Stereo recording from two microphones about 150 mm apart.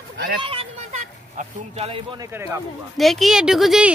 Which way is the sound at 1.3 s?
45° right (ahead or behind).